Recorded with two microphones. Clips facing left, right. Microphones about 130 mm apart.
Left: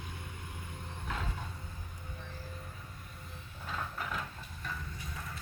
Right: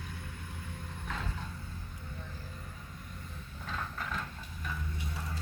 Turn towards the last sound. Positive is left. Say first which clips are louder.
# even
turn(degrees=5)  # may be behind; listen again after turning